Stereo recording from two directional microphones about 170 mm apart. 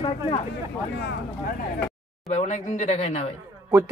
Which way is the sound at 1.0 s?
90° left.